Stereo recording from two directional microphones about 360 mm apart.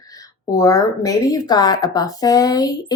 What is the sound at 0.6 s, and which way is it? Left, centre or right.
Speech, centre.